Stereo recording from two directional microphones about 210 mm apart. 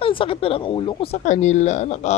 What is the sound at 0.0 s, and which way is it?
A man's voice, 25° left (ahead or behind).